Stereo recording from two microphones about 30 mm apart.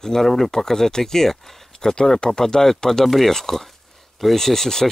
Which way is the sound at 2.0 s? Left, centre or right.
Left.